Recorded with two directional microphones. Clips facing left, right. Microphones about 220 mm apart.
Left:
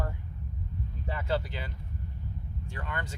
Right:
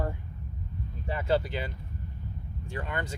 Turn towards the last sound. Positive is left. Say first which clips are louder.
# right 4 dB
turn(degrees=-15)  # may be behind; listen again after turning